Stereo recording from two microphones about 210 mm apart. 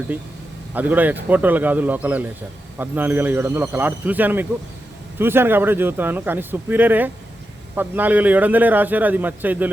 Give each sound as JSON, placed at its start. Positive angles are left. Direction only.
{"t": 0.1, "sound": "a man's voice", "side_deg": -10}